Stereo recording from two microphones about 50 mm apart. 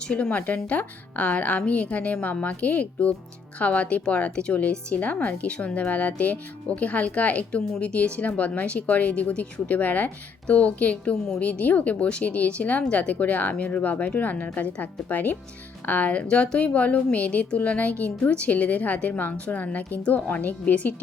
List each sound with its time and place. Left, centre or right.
0.1 s speech: left
16.2 s speech: left